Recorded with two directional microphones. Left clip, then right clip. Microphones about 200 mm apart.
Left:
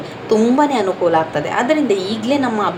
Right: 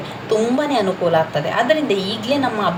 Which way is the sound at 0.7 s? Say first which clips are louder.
Left 2 dB; 25° left (ahead or behind).